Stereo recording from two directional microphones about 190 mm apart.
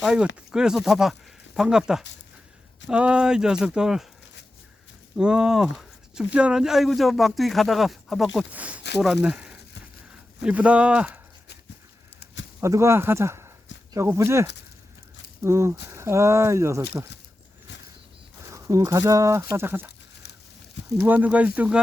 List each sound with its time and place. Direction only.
0.0 s speech: 5° right (ahead or behind)
5.1 s speech: 5° right (ahead or behind)
12.2 s a sound: 75° left (ahead or behind)
12.5 s speech: 15° right (ahead or behind)
15.4 s speech: 15° right (ahead or behind)
18.5 s speech: 15° right (ahead or behind)
21.0 s speech: 10° right (ahead or behind)